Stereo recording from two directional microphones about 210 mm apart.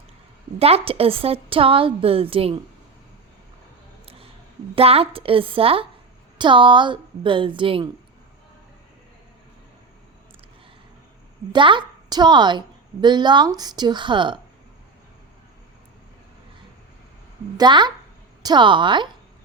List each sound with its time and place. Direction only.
0.6 s a woman's voice: 30° right (ahead or behind)
4.7 s a woman's voice: 30° right (ahead or behind)
11.5 s a woman's voice: 25° right (ahead or behind)
17.6 s a woman's voice: 20° right (ahead or behind)